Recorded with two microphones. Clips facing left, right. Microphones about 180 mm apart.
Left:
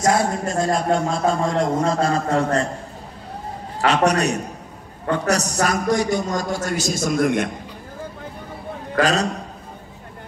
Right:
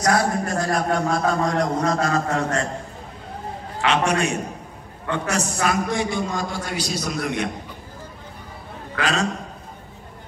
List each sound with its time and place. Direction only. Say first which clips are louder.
0.0 s a man's voice: left 1 dB; 25° left (ahead or behind)
3.8 s a man's voice: left 3 dB; 40° left (ahead or behind)
8.9 s a man's voice: left 4 dB; 40° left (ahead or behind)